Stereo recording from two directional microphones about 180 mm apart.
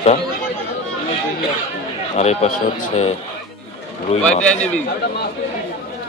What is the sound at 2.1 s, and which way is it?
A man's voice, 35° left (ahead or behind).